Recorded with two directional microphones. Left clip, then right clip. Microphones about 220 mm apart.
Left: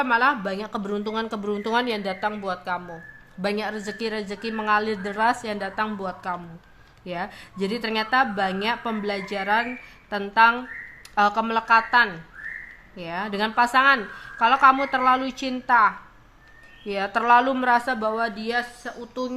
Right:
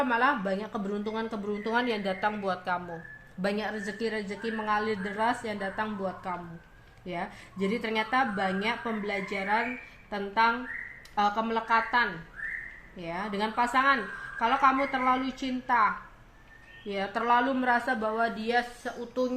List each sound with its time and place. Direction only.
0.1 s speech: 20° left (ahead or behind)
4.5 s a woman's voice: 35° left (ahead or behind)
13.1 s a woman's voice: 30° left (ahead or behind)
16.9 s a woman's voice: 35° left (ahead or behind)
17.7 s a woman's voice: 20° left (ahead or behind)